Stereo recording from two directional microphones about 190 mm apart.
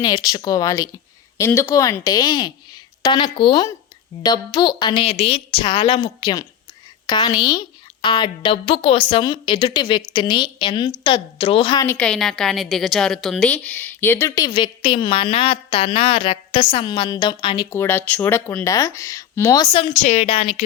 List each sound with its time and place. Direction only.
0.0 s a woman's voice: 20° left (ahead or behind)
11.9 s a woman's voice: 5° left (ahead or behind); by 17.7 s 25° left (ahead or behind)
17.7 s speech: 10° left (ahead or behind); by 20.6 s 30° left (ahead or behind)